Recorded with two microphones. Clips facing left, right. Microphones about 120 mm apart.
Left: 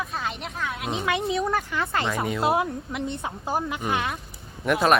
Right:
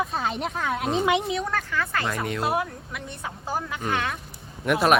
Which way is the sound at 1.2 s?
Centre (ahead or behind).